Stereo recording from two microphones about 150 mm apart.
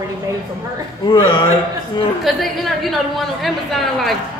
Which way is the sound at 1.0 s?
30° left (ahead or behind).